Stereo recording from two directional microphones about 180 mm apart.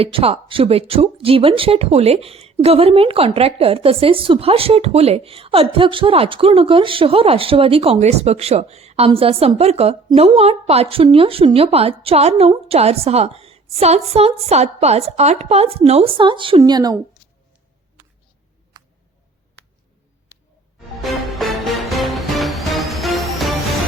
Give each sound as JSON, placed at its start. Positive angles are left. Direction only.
{"t": 0.0, "sound": "speech", "side_deg": -30}
{"t": 21.0, "sound": "music", "side_deg": 0}